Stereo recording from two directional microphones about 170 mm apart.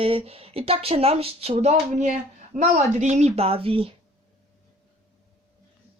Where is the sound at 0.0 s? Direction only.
35° right (ahead or behind).